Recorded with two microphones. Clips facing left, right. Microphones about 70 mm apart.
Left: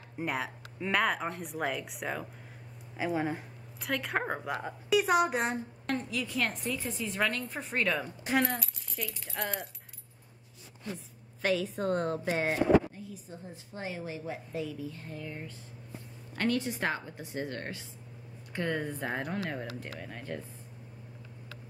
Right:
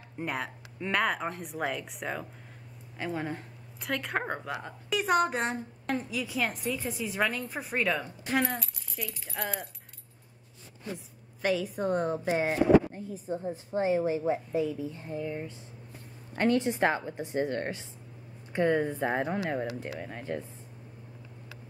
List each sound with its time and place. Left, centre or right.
0.2 s a woman's voice: centre
3.8 s a woman's voice: centre
11.4 s speech: centre
12.9 s a woman's voice: right
14.5 s a woman's voice: centre